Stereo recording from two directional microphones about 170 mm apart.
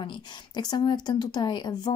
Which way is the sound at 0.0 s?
25° left (ahead or behind).